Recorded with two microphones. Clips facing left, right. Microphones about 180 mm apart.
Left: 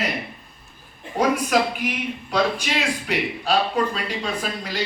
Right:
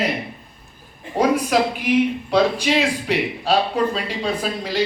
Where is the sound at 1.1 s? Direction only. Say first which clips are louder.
Right 2 dB; 30° right (ahead or behind).